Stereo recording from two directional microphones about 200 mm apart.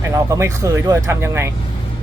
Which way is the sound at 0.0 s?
15° right (ahead or behind).